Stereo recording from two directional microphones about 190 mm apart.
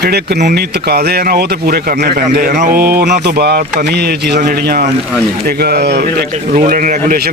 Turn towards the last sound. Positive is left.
turn(degrees=-50)  # may be behind; listen again after turning